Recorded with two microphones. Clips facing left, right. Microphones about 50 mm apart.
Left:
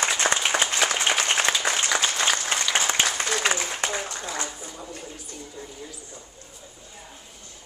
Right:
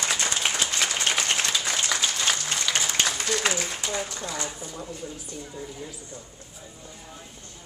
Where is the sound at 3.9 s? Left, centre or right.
Left.